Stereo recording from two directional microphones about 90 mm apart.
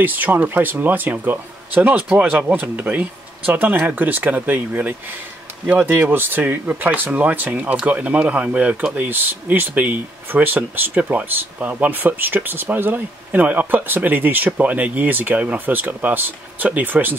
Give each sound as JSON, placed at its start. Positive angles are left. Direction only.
{"t": 0.0, "sound": "speech", "side_deg": -20}